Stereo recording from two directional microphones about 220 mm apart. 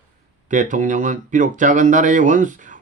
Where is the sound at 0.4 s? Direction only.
35° right (ahead or behind).